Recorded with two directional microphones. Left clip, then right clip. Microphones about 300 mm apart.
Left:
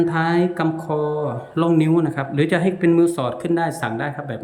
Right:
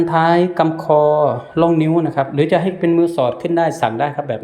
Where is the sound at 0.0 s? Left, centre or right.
Centre.